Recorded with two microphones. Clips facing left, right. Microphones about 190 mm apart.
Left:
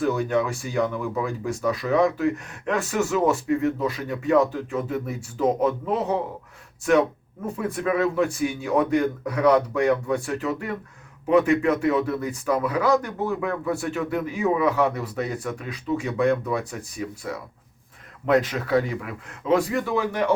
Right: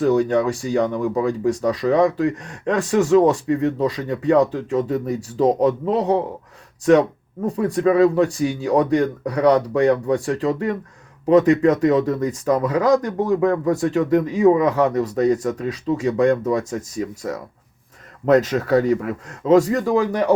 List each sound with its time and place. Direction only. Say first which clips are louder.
0.0 s speech: right 6 dB; 35° right (ahead or behind)
7.4 s speech: right 7 dB; 35° right (ahead or behind)
18.3 s speech: right 5 dB; 45° right (ahead or behind)